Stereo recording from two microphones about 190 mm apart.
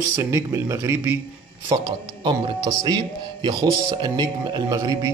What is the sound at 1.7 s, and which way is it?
Speech, 25° right (ahead or behind).